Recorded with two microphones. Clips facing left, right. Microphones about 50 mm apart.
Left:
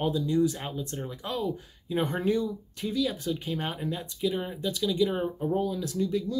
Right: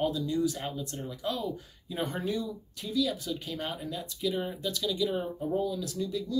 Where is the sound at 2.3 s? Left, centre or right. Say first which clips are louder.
Left 6 dB; left.